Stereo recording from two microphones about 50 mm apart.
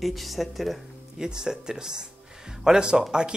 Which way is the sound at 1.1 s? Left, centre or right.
Centre.